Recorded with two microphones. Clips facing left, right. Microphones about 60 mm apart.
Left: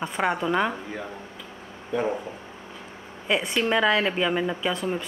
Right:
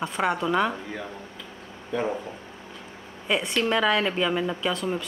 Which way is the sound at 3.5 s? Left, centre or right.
Centre.